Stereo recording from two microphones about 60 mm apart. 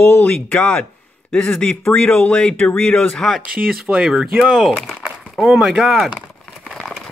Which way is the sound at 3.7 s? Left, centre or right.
Centre.